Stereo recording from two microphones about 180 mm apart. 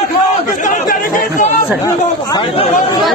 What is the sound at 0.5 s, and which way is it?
A man's voice, 45° left (ahead or behind).